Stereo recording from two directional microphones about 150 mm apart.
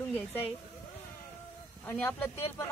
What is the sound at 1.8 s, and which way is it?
Speech, 5° left (ahead or behind).